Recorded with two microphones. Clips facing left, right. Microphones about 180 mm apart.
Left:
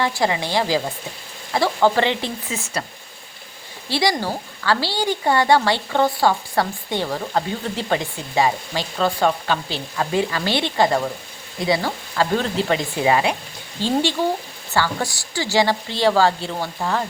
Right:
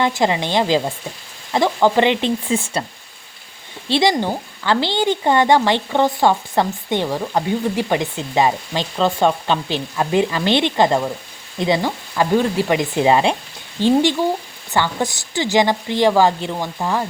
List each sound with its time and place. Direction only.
0.0 s a woman's voice: 20° right (ahead or behind)
2.5 s speech: 30° right (ahead or behind)
3.8 s a woman's voice: 20° right (ahead or behind)